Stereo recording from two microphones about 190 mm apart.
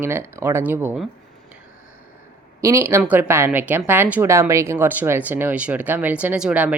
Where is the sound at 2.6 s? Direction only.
15° right (ahead or behind).